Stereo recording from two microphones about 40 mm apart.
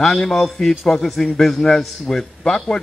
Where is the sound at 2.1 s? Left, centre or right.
Centre.